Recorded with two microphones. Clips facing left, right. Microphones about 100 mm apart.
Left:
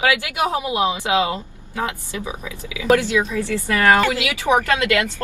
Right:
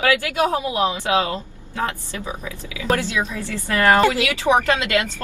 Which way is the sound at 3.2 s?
20° right (ahead or behind).